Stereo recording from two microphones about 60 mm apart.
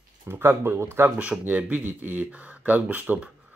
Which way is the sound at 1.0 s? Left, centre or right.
Right.